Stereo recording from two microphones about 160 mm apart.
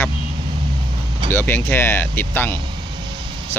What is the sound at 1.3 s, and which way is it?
Speech, 15° left (ahead or behind).